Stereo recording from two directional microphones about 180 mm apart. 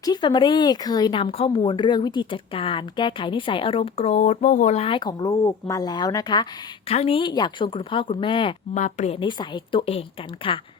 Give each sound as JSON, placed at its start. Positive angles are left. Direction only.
{"t": 0.0, "sound": "speech", "side_deg": 25}
{"t": 8.7, "sound": "a woman's voice", "side_deg": 40}